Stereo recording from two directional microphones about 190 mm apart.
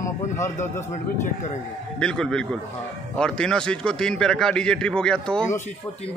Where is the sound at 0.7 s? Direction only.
40° left (ahead or behind).